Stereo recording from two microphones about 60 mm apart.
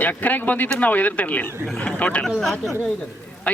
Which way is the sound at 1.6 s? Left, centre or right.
Centre.